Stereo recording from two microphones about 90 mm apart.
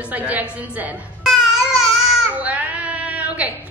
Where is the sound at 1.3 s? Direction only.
Centre (ahead or behind).